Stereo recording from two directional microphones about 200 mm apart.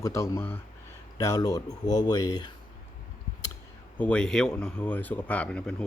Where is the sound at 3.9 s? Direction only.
5° left (ahead or behind).